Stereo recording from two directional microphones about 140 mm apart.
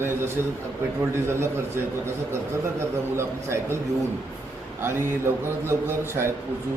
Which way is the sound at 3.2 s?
20° right (ahead or behind).